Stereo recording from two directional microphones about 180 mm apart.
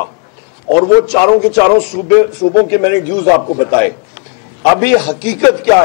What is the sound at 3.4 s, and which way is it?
Speech, 25° left (ahead or behind).